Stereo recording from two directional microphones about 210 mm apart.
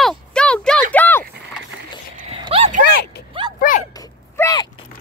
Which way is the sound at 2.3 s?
25° right (ahead or behind).